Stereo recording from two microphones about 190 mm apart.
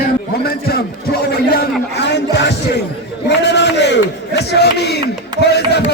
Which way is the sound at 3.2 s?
65° left (ahead or behind).